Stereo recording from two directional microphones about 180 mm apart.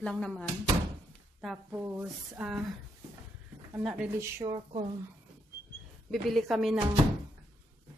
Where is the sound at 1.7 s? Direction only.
10° right (ahead or behind).